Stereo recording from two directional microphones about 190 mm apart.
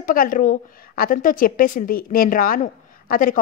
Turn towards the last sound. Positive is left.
turn(degrees=45)  # may be behind; listen again after turning